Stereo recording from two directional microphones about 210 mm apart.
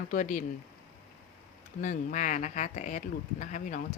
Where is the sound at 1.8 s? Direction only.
40° left (ahead or behind).